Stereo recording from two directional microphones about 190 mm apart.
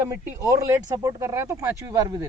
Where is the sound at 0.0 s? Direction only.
15° right (ahead or behind).